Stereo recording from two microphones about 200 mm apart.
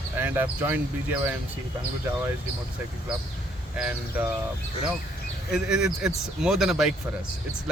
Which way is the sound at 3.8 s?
5° right (ahead or behind).